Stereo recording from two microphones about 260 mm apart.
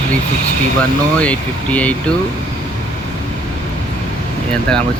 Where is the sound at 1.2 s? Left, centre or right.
Centre.